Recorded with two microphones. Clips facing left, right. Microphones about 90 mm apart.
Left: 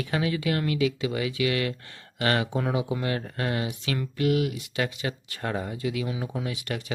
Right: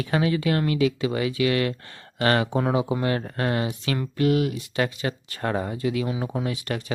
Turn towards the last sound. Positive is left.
turn(degrees=-40)  # may be behind; listen again after turning